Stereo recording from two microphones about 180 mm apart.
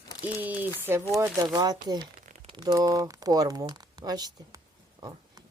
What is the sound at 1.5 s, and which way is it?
A woman's voice, 20° right (ahead or behind).